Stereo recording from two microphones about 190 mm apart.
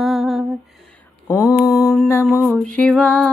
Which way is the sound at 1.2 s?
15° left (ahead or behind).